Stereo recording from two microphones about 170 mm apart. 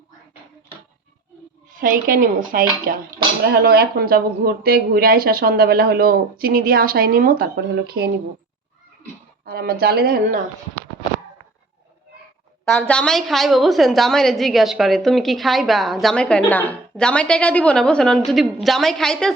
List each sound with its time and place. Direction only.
1.7 s speech: 55° right (ahead or behind); by 8.1 s 70° right (ahead or behind)
9.5 s speech: 65° right (ahead or behind)
12.9 s a woman's voice: 5° left (ahead or behind)